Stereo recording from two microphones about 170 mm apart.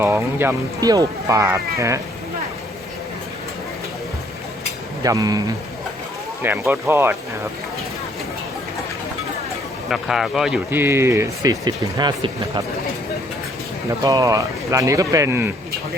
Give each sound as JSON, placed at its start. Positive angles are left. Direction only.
{"t": 0.0, "sound": "speech", "side_deg": -10}
{"t": 5.0, "sound": "speech", "side_deg": -20}
{"t": 6.4, "sound": "speech", "side_deg": -15}
{"t": 9.9, "sound": "speech", "side_deg": 0}
{"t": 14.0, "sound": "speech", "side_deg": -20}